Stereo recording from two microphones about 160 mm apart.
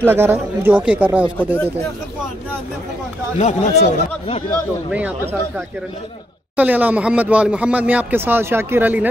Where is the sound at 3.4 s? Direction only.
40° left (ahead or behind).